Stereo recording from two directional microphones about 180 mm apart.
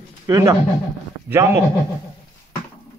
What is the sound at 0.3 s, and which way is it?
A man's voice, 20° right (ahead or behind).